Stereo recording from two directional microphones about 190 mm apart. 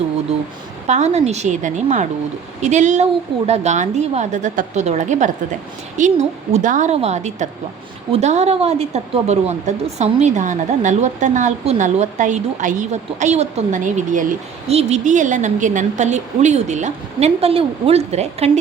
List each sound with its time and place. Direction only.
0.9 s a woman's voice: 35° right (ahead or behind)